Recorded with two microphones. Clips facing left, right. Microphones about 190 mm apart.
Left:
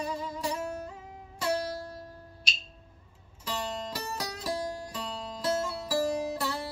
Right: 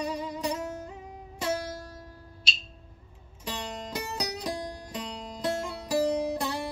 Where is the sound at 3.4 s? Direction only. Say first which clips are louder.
Left 2 dB; 20° right (ahead or behind).